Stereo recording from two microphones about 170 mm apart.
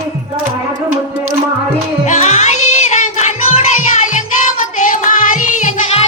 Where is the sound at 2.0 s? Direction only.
40° left (ahead or behind).